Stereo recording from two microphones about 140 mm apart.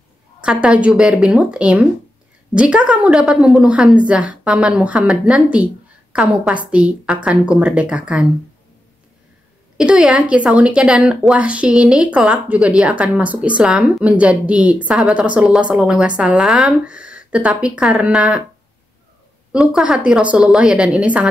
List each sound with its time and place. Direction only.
0.4 s a woman's voice: 5° right (ahead or behind)
9.8 s a woman's voice: 5° right (ahead or behind)
19.5 s a woman's voice: 5° right (ahead or behind)